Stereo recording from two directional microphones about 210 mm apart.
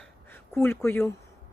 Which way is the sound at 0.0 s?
10° left (ahead or behind).